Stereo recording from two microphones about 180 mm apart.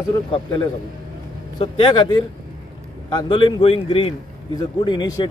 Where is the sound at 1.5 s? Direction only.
30° left (ahead or behind).